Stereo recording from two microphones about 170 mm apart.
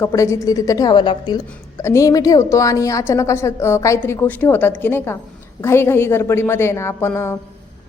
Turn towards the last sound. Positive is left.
turn(degrees=15)  # may be behind; listen again after turning